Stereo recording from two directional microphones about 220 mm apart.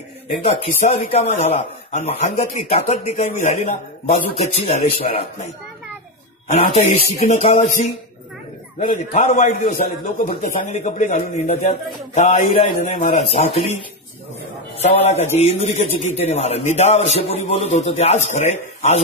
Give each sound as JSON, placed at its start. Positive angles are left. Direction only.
{"t": 0.5, "sound": "speech", "side_deg": 25}
{"t": 6.7, "sound": "a man's voice", "side_deg": 30}
{"t": 14.8, "sound": "speech", "side_deg": 30}